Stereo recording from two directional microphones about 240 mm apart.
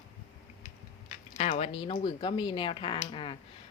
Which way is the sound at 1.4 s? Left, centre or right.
Left.